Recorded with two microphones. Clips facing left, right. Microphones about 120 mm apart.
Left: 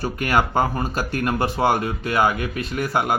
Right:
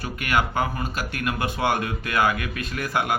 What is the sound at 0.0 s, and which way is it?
Speech, 35° left (ahead or behind).